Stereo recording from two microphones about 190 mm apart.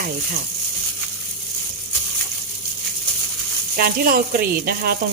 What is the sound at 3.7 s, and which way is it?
Speech, 50° right (ahead or behind).